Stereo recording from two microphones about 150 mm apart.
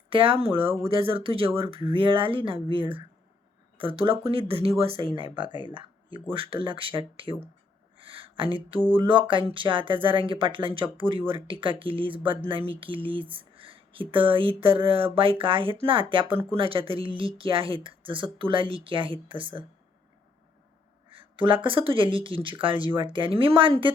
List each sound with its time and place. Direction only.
0.1 s speech: 35° right (ahead or behind)
5.7 s a sound: 35° right (ahead or behind)
6.3 s speech: 35° right (ahead or behind)
7.9 s a sound: 35° right (ahead or behind)
8.9 s speech: 35° right (ahead or behind)
16.3 s speech: 15° right (ahead or behind)
16.6 s speech: 35° right (ahead or behind)
21.1 s speech: 35° right (ahead or behind)